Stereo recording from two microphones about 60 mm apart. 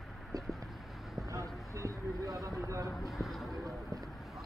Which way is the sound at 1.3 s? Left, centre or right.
Right.